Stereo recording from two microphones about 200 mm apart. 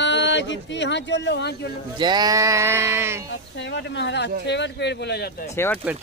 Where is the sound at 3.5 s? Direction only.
60° left (ahead or behind).